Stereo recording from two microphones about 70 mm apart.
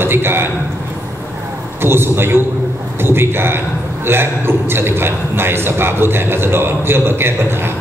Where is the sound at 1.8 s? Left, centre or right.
Right.